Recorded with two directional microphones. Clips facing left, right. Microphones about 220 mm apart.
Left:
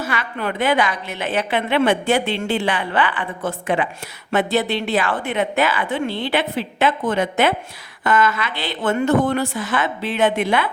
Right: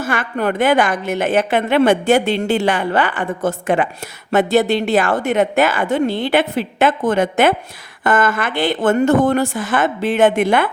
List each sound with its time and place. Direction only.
0.0 s a woman's voice: 50° right (ahead or behind)